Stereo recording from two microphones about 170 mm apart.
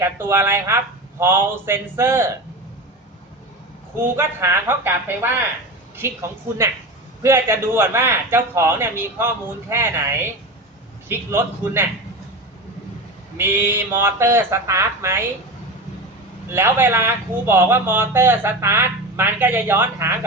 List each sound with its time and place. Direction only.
0.0 s speech: 15° right (ahead or behind)
4.0 s speech: 10° right (ahead or behind)
13.3 s speech: 15° right (ahead or behind)
16.5 s speech: 15° right (ahead or behind)